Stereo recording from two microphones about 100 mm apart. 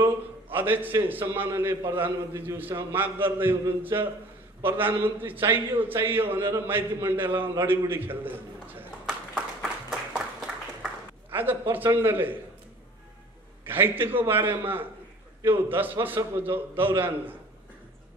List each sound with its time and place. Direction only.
0.0 s a man's voice: 20° right (ahead or behind)
9.6 s a sound: 5° right (ahead or behind)
11.2 s a man's voice: 20° right (ahead or behind)
13.7 s a man's voice: 20° right (ahead or behind)